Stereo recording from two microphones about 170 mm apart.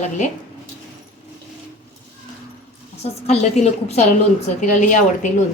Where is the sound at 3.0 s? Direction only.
40° left (ahead or behind).